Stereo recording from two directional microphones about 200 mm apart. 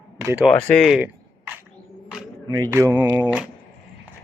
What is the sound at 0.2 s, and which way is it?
Speech, 10° right (ahead or behind).